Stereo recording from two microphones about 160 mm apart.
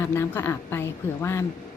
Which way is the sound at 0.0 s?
15° left (ahead or behind).